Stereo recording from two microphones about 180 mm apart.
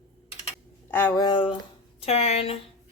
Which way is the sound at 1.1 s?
25° left (ahead or behind).